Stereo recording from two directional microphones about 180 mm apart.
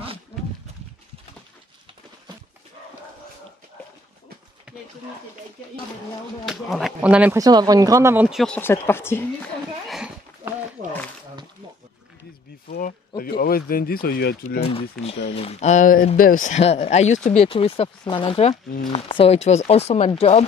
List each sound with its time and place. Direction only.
6.4 s speech: centre (ahead or behind)
7.3 s speech: 20° right (ahead or behind)
8.3 s speech: centre (ahead or behind)
8.5 s speech: 15° left (ahead or behind)
9.8 s a sound: 5° right (ahead or behind)
12.6 s speech: 55° left (ahead or behind)
14.6 s speech: 35° left (ahead or behind)